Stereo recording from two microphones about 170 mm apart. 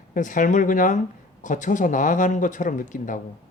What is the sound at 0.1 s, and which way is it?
Speech, 50° left (ahead or behind).